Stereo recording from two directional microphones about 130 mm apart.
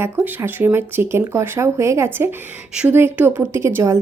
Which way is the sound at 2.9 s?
20° right (ahead or behind).